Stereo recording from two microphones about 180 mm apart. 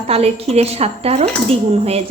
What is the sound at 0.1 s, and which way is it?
A woman's voice, 35° right (ahead or behind).